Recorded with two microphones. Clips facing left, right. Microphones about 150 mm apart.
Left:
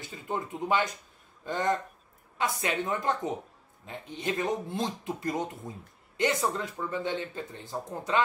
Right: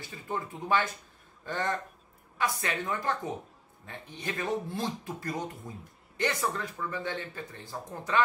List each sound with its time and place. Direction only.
0.3 s speech: 20° left (ahead or behind)